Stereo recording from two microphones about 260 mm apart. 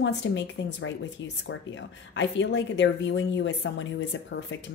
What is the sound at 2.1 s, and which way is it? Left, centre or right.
A woman's voice, left.